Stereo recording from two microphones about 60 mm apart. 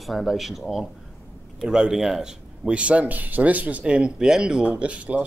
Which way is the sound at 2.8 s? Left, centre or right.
Right.